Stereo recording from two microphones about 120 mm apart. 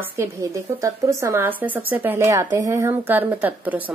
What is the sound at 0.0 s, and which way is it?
A woman's voice, 20° right (ahead or behind).